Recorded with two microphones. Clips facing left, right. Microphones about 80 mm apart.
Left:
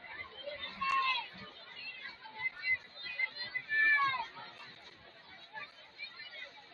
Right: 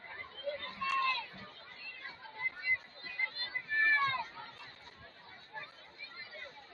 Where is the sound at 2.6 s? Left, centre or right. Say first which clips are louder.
Right 1 dB; centre.